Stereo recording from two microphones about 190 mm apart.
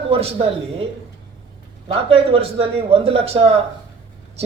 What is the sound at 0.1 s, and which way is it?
Speech, 30° right (ahead or behind).